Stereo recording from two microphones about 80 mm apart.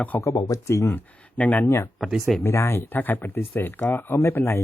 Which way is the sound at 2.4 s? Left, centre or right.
Left.